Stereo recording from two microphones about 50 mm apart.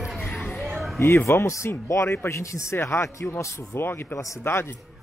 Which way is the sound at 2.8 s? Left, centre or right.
Left.